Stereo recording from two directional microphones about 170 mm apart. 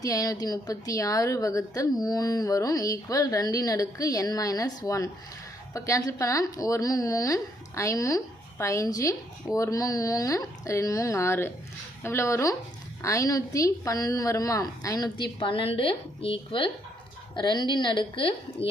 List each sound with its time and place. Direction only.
0.0 s a woman's voice: 20° left (ahead or behind)